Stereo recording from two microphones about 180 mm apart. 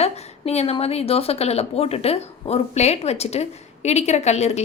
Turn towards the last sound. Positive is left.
turn(degrees=40)  # may be behind; listen again after turning